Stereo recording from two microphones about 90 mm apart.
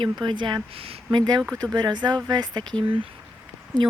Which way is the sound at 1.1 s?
50° right (ahead or behind).